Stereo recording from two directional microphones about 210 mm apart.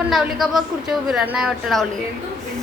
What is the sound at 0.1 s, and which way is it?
A woman's voice, centre (ahead or behind).